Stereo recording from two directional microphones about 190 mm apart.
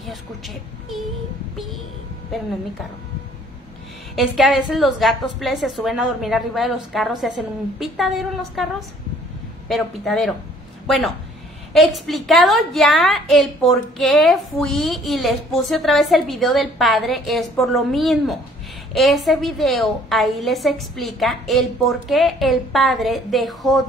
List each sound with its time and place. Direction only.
4.1 s a woman's voice: centre (ahead or behind)